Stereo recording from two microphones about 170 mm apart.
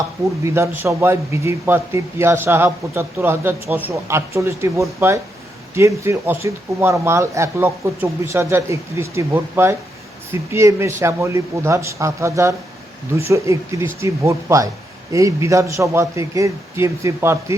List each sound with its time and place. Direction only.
0.4 s a man's voice: 15° right (ahead or behind)